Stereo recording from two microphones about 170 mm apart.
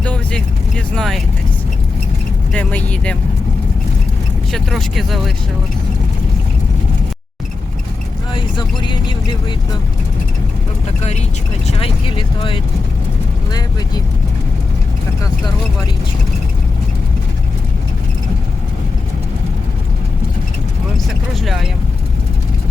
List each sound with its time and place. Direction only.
0.0 s vehicle: 5° left (ahead or behind)
0.9 s speech: centre (ahead or behind)
2.5 s speech: 5° left (ahead or behind)
4.5 s speech: centre (ahead or behind)
8.3 s speech: 30° left (ahead or behind)
11.7 s speech: 30° left (ahead or behind)
21.3 s speech: centre (ahead or behind)